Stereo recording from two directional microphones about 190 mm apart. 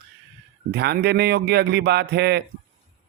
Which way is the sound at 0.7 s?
60° right (ahead or behind).